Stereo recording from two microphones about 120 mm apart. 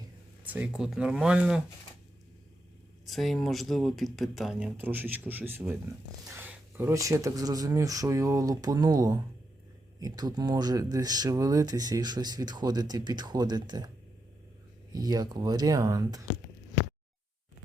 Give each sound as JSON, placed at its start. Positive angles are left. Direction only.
{"t": 0.4, "sound": "speech", "side_deg": -15}
{"t": 3.1, "sound": "speech", "side_deg": 0}
{"t": 4.6, "sound": "speech", "side_deg": -15}
{"t": 14.9, "sound": "speech", "side_deg": -35}